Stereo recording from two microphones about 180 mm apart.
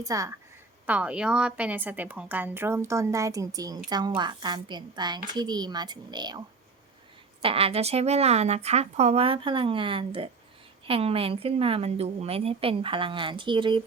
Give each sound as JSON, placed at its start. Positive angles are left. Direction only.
{"t": 0.0, "sound": "a woman's voice", "side_deg": -20}
{"t": 0.9, "sound": "a woman's voice", "side_deg": -5}
{"t": 7.4, "sound": "a woman's voice", "side_deg": -30}